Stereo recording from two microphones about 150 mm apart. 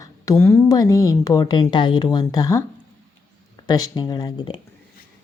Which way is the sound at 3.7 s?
25° left (ahead or behind).